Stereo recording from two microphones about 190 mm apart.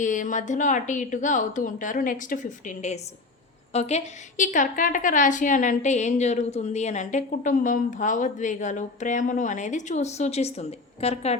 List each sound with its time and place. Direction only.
0.0 s a woman's voice: 40° left (ahead or behind)